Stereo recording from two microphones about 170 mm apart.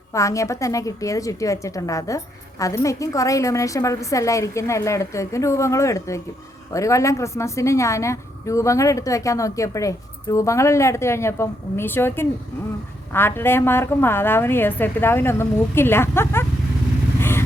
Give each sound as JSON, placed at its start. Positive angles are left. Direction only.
{"t": 0.1, "sound": "a woman's voice", "side_deg": 20}
{"t": 17.2, "sound": "vehicle", "side_deg": 15}